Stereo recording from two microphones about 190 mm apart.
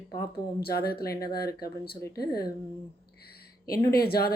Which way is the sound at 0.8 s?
55° left (ahead or behind).